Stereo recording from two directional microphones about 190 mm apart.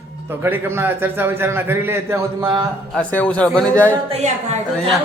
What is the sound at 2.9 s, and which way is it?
A man's voice, 5° left (ahead or behind).